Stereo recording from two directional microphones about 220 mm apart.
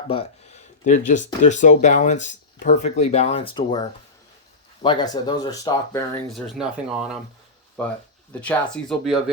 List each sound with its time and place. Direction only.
0.1 s speech: 30° left (ahead or behind)
6.3 s speech: centre (ahead or behind)
8.3 s speech: 5° left (ahead or behind)